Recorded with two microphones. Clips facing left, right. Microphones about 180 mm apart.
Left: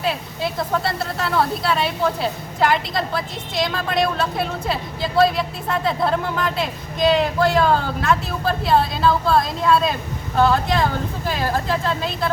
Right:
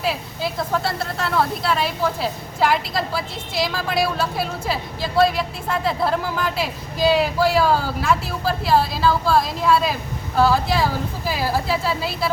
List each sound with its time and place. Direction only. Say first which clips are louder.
0.0 s speech: left 1 dB; centre (ahead or behind)